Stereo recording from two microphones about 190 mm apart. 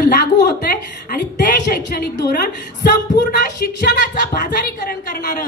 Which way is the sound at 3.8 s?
45° left (ahead or behind).